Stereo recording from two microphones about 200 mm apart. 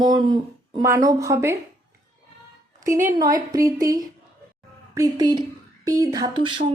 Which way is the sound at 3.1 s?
20° right (ahead or behind).